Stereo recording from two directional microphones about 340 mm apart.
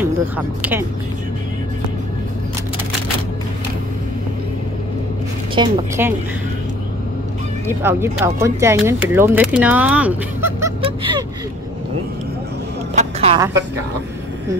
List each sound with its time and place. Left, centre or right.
0.6 s speech: centre
5.5 s a woman's voice: centre
7.6 s speech: centre
12.9 s vehicle: centre